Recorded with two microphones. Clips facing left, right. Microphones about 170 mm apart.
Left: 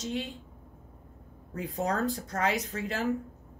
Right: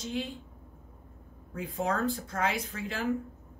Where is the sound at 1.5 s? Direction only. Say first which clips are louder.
Left 1 dB; 40° left (ahead or behind).